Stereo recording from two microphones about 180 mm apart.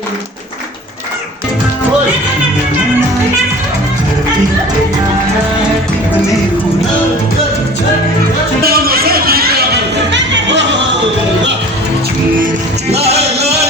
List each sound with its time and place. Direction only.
8.6 s a sound: 60° right (ahead or behind)
10.1 s music: 85° right
12.9 s music: 35° right (ahead or behind)